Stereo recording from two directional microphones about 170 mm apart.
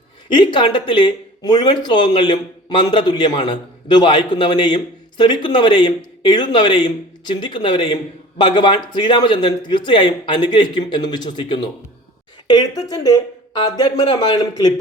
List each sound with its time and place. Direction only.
0.3 s speech: 30° left (ahead or behind)